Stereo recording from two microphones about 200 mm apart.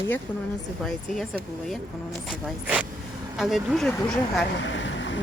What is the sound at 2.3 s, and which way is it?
Speech, 5° right (ahead or behind).